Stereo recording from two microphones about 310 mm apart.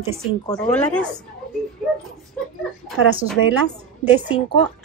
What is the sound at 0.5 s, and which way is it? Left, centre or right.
Speech, centre.